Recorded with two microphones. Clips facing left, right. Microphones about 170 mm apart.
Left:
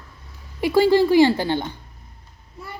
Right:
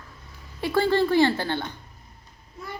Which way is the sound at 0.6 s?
10° left (ahead or behind).